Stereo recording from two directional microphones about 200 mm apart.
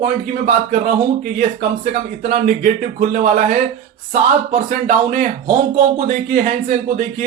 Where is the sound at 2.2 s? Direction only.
40° right (ahead or behind).